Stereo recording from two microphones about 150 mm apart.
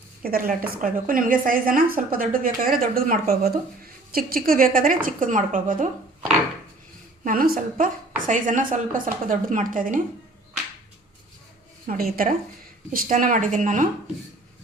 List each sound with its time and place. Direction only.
0.2 s a woman's voice: 75° right (ahead or behind); by 5.9 s 60° right (ahead or behind)
7.3 s a woman's voice: 75° right (ahead or behind)
8.3 s a woman's voice: 60° right (ahead or behind)
11.9 s a woman's voice: 75° right (ahead or behind); by 13.8 s 60° right (ahead or behind)